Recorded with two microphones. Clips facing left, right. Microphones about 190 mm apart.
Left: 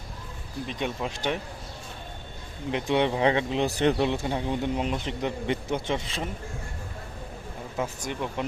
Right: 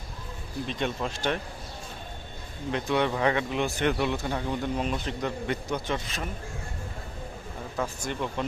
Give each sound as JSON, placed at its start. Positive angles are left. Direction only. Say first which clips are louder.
{"t": 0.7, "sound": "speech", "louder": "even", "side_deg": 10}
{"t": 2.7, "sound": "speech", "louder": "left 2 dB", "side_deg": 20}
{"t": 7.8, "sound": "speech", "louder": "even", "side_deg": 15}